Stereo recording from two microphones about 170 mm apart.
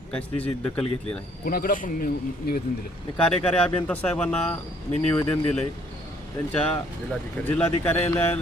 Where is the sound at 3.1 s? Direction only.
5° left (ahead or behind).